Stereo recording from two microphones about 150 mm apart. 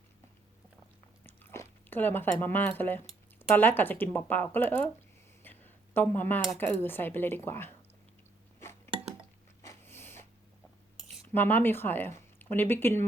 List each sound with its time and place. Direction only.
1.2 s chewing: 15° left (ahead or behind)
3.5 s speech: 10° left (ahead or behind)
5.4 s a sound: 15° left (ahead or behind)
6.6 s speech: 15° left (ahead or behind)
9.6 s dog: 15° left (ahead or behind)
11.3 s speech: 10° left (ahead or behind)